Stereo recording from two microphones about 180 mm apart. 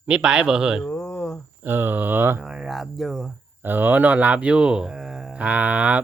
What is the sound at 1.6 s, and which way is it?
Speech, 10° right (ahead or behind).